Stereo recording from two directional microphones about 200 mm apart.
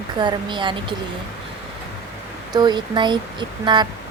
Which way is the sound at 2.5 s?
20° right (ahead or behind).